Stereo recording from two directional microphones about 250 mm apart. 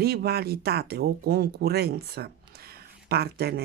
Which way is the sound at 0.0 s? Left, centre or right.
Right.